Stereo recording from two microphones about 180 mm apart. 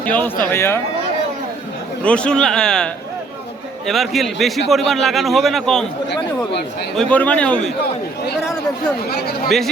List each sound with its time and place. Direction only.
0.0 s a man's voice: 10° left (ahead or behind)
2.0 s a man's voice: 5° left (ahead or behind)
6.1 s chatter: 70° left (ahead or behind)
6.9 s a man's voice: 5° left (ahead or behind)
9.0 s speech: 60° left (ahead or behind)